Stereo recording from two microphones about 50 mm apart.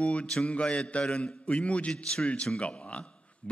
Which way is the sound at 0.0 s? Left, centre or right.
Left.